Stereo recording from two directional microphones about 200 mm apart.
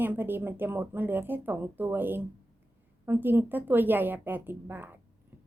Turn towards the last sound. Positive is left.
turn(degrees=-10)  # may be behind; listen again after turning